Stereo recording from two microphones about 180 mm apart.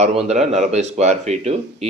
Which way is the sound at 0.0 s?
35° right (ahead or behind).